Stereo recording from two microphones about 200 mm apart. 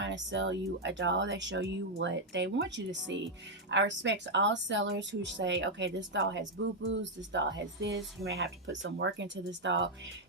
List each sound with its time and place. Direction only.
0.0 s speech: 65° right (ahead or behind)